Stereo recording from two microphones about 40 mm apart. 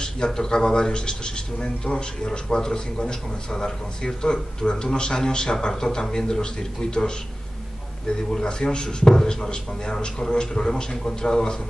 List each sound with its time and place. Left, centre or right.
0.0 s speech: centre
8.3 s a man's voice: left